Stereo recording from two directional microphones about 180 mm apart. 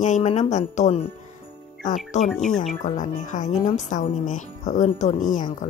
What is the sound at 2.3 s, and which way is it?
Speech, centre (ahead or behind).